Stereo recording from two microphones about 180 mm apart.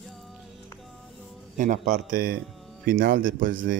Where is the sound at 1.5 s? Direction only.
45° right (ahead or behind).